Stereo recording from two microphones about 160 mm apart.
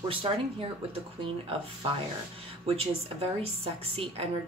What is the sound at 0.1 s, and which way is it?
A woman's voice, 35° right (ahead or behind).